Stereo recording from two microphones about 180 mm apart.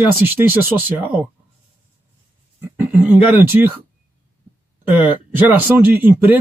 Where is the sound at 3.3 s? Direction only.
10° right (ahead or behind).